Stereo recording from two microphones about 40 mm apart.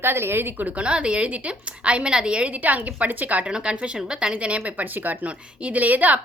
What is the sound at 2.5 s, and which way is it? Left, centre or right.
Speech, right.